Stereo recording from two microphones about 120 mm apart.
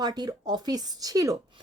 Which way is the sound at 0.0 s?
35° right (ahead or behind).